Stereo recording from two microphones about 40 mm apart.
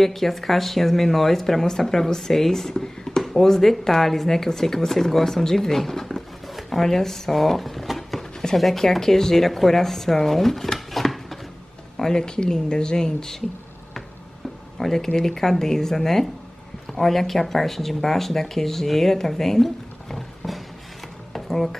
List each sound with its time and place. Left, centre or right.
0.0 s speech: centre
6.4 s a sound: centre
8.2 s speech: centre
12.0 s speech: centre
14.8 s speech: centre
21.3 s a sound: centre